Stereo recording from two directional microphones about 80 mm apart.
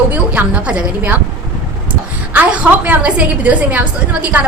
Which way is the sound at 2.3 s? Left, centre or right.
Centre.